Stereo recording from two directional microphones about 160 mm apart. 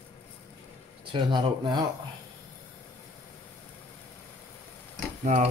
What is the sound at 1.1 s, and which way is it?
Speech, 30° right (ahead or behind).